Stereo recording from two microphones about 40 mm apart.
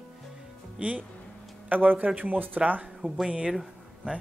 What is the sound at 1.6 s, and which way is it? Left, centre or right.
Speech, right.